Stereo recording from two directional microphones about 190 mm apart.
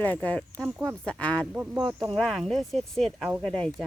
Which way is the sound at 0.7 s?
5° right (ahead or behind).